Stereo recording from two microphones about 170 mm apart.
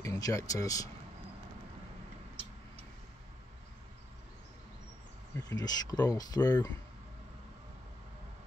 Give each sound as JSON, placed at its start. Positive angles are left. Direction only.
{"t": 0.0, "sound": "speech", "side_deg": 20}
{"t": 5.4, "sound": "speech", "side_deg": 20}